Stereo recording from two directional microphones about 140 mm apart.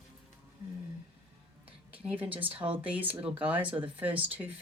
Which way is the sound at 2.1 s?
10° right (ahead or behind).